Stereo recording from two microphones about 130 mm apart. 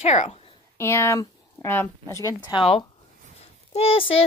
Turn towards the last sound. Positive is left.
turn(degrees=45)  # may be behind; listen again after turning